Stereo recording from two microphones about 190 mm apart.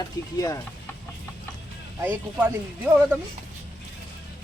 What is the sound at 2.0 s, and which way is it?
Speech, 10° right (ahead or behind).